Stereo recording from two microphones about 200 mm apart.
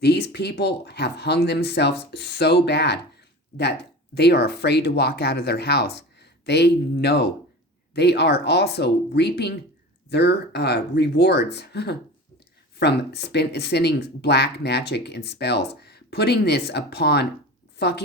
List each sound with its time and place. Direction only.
0.0 s a woman's voice: 55° left (ahead or behind)